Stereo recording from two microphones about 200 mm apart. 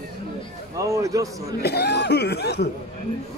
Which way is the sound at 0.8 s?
15° right (ahead or behind).